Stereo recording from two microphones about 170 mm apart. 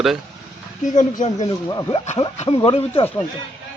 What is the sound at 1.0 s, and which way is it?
Speech, 45° left (ahead or behind).